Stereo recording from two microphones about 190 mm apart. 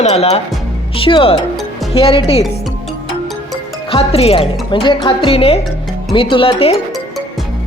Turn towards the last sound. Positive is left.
turn(degrees=30)  # may be behind; listen again after turning